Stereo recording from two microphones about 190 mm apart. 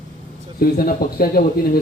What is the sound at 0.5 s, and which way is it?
Speech, 50° left (ahead or behind).